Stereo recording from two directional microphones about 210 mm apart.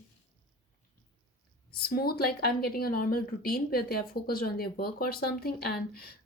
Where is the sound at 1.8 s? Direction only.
45° left (ahead or behind).